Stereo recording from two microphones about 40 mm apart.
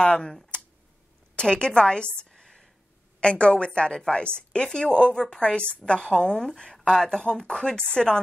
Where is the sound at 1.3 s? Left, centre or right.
Left.